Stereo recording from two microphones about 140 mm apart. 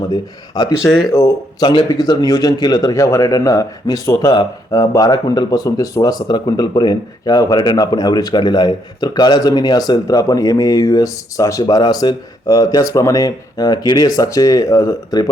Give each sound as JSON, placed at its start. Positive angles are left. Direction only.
{"t": 0.1, "sound": "speech", "side_deg": 30}